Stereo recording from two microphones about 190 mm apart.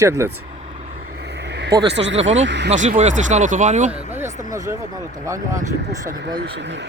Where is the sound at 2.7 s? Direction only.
35° right (ahead or behind).